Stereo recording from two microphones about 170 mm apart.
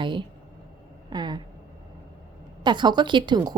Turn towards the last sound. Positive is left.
turn(degrees=-25)  # may be behind; listen again after turning